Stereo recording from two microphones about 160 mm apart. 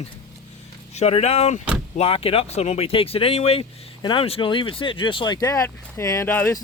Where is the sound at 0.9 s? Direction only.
40° left (ahead or behind).